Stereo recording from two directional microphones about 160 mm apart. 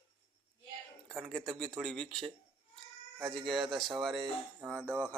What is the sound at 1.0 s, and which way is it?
Speech, 5° left (ahead or behind).